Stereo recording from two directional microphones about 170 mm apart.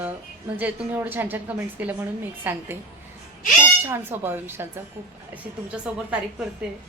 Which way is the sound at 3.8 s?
15° right (ahead or behind).